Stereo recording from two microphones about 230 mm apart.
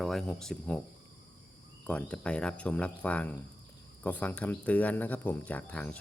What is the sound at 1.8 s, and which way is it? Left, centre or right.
Speech, centre.